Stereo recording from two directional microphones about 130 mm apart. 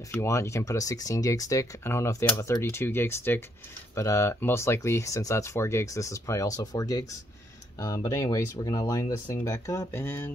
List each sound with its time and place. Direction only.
0.1 s speech: 20° left (ahead or behind)